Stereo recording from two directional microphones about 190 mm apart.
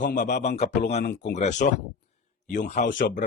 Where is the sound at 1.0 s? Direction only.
45° left (ahead or behind).